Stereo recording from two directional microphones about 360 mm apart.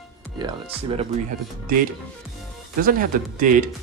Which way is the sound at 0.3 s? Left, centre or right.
Centre.